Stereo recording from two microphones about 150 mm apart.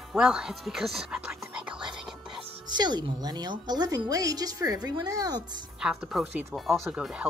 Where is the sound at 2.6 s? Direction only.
30° right (ahead or behind).